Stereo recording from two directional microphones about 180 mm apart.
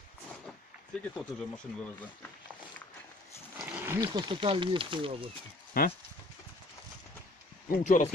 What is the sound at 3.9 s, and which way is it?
Speech, 20° right (ahead or behind).